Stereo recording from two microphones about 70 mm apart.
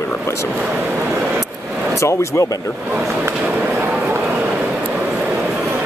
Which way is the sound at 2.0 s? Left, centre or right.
Left.